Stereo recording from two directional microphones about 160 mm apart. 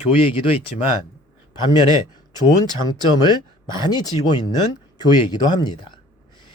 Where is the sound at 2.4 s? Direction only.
25° left (ahead or behind).